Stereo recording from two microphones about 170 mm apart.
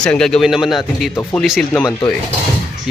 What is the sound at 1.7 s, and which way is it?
Speech, 15° left (ahead or behind).